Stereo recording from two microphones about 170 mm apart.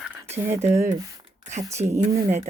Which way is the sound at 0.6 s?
40° right (ahead or behind).